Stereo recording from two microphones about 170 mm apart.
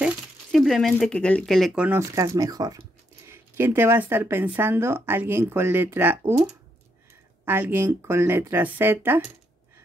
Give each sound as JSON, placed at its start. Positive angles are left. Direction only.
{"t": 0.0, "sound": "speech", "side_deg": 0}
{"t": 1.9, "sound": "speech", "side_deg": -15}
{"t": 7.4, "sound": "speech", "side_deg": -10}